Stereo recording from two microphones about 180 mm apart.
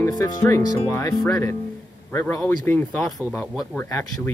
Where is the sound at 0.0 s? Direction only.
20° left (ahead or behind).